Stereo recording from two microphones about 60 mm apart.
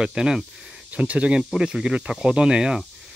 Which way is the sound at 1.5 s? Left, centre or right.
Centre.